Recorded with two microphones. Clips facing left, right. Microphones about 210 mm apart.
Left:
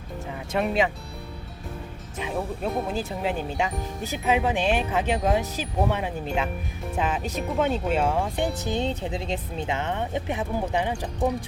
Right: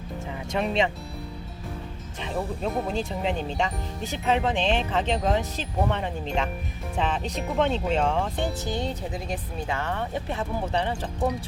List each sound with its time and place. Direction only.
0.5 s speech: 5° left (ahead or behind)
2.2 s speech: 5° left (ahead or behind)
8.6 s speech: 20° left (ahead or behind)